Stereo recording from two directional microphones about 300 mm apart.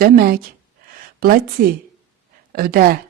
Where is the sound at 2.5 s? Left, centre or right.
Right.